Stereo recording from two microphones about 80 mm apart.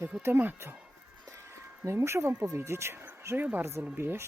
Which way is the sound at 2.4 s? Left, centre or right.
Right.